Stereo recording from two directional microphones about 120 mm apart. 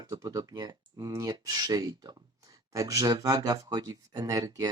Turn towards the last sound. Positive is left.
turn(degrees=-30)  # may be behind; listen again after turning